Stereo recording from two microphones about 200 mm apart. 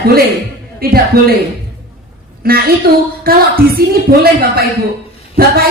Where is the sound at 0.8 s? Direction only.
50° right (ahead or behind).